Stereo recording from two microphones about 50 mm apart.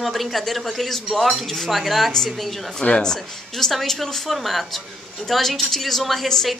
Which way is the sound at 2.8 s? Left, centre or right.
Centre.